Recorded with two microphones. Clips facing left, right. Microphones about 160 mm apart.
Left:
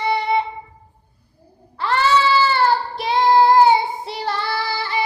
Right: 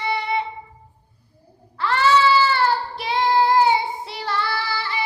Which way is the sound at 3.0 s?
35° left (ahead or behind).